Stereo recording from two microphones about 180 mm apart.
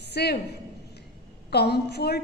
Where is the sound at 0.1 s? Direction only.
65° left (ahead or behind).